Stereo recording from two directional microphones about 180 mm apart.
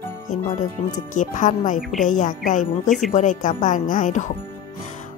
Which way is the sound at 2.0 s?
45° left (ahead or behind).